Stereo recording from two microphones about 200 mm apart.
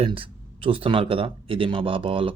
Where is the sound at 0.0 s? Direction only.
25° right (ahead or behind).